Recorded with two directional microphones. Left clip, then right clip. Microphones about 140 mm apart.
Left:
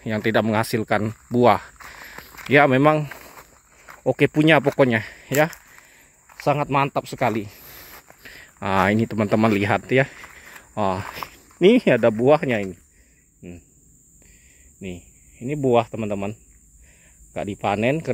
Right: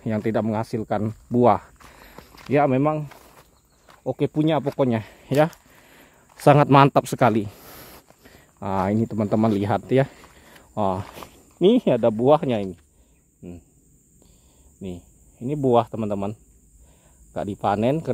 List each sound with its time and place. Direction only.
0.0 s speech: 10° right (ahead or behind)
0.3 s speech: 5° left (ahead or behind)
2.1 s a sound: 35° left (ahead or behind)
2.5 s speech: 5° left (ahead or behind)
2.8 s speech: 20° left (ahead or behind)
3.1 s walk: 30° left (ahead or behind)
4.8 s speech: 5° right (ahead or behind)
5.9 s a sound: 35° right (ahead or behind)
7.2 s speech: 25° right (ahead or behind)
8.2 s speech: 5° right (ahead or behind)
14.8 s speech: 5° right (ahead or behind)